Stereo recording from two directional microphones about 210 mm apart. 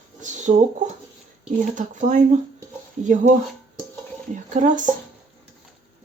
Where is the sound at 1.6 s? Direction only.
35° right (ahead or behind).